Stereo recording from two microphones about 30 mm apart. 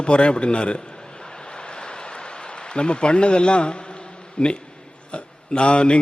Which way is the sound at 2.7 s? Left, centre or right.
Left.